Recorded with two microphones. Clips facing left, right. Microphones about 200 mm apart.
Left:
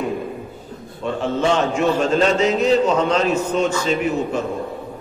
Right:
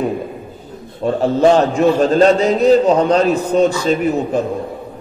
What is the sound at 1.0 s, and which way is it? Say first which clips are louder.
A man's voice: right 7 dB; 40° right (ahead or behind).